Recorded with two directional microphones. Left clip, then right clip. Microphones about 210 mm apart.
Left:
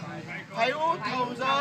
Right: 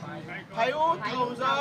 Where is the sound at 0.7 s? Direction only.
15° right (ahead or behind).